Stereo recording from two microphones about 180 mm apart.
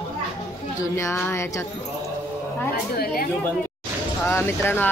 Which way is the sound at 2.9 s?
55° left (ahead or behind).